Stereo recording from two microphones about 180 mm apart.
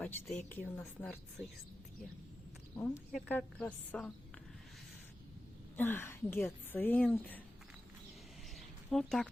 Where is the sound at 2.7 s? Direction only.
15° left (ahead or behind).